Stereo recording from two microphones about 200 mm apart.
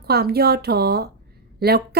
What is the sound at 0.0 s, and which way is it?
Speech, 50° right (ahead or behind).